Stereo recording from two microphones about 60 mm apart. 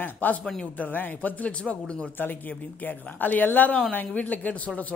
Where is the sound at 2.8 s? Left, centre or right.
Left.